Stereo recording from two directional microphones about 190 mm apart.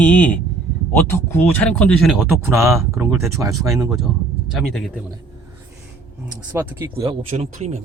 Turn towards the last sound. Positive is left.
turn(degrees=-35)  # may be behind; listen again after turning